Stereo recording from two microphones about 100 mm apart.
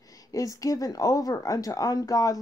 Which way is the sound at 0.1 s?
35° left (ahead or behind).